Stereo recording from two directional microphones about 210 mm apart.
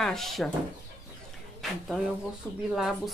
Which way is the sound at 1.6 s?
Centre (ahead or behind).